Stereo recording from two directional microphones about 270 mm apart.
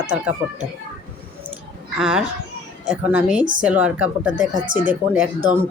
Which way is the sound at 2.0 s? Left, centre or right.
Centre.